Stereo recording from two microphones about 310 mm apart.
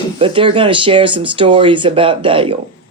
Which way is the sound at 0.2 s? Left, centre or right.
Centre.